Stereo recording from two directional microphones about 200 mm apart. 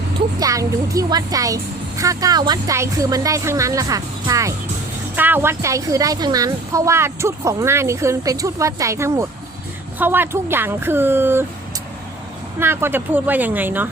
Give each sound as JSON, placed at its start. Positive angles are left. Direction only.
{"t": 0.3, "sound": "speech", "side_deg": -15}
{"t": 12.5, "sound": "speech", "side_deg": -10}